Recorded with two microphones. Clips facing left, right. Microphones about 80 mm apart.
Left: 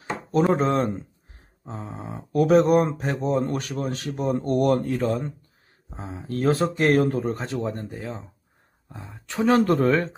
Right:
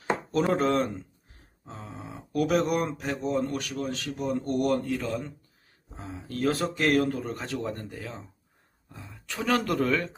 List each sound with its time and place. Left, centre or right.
0.5 s speech: left